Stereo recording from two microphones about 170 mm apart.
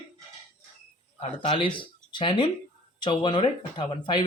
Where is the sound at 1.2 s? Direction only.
35° left (ahead or behind).